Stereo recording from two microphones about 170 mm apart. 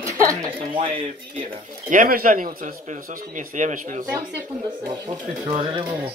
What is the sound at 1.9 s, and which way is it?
Speech, 55° right (ahead or behind).